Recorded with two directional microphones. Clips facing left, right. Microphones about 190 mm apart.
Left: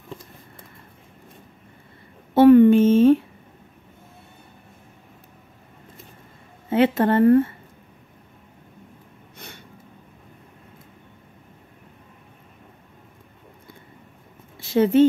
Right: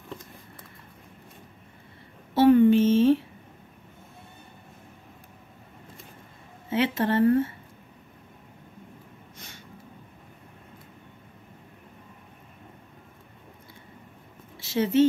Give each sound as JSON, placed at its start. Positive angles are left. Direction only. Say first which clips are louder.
{"t": 2.3, "sound": "a sound", "louder": "left 5 dB", "side_deg": 60}
{"t": 6.7, "sound": "speech", "louder": "left 6 dB", "side_deg": 55}
{"t": 14.6, "sound": "speech", "louder": "left 5 dB", "side_deg": 50}